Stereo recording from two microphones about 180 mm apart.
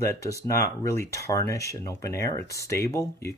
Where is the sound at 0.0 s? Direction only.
15° left (ahead or behind).